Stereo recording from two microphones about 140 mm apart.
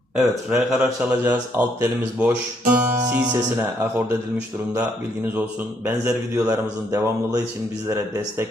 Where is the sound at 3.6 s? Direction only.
15° right (ahead or behind).